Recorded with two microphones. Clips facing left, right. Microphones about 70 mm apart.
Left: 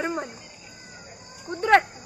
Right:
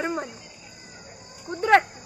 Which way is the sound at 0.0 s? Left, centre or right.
Centre.